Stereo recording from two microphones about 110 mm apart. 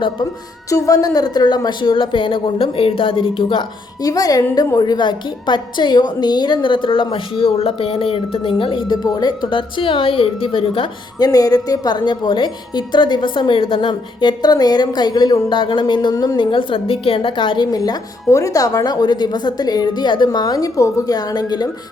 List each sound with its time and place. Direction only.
0.7 s a woman's voice: 35° left (ahead or behind); by 3.7 s 50° left (ahead or behind)
4.0 s a woman's voice: 35° left (ahead or behind); by 10.8 s 55° left (ahead or behind)
11.2 s a woman's voice: 35° left (ahead or behind)
16.1 s a woman's voice: 30° left (ahead or behind)
16.4 s a woman's voice: 50° left (ahead or behind)
17.7 s a woman's voice: 35° left (ahead or behind)